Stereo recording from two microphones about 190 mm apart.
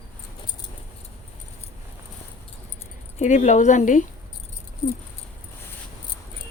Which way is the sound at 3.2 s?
40° left (ahead or behind).